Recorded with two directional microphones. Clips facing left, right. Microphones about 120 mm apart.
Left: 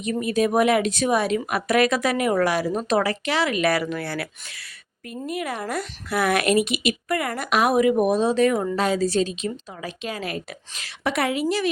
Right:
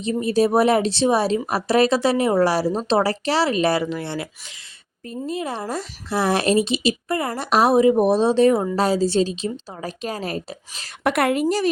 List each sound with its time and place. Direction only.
0.0 s a woman's voice: 30° right (ahead or behind)
11.0 s a woman's voice: 55° right (ahead or behind)